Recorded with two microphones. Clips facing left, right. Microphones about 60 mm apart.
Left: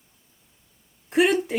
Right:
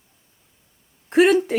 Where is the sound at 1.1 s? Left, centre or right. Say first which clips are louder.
Right 5 dB; right.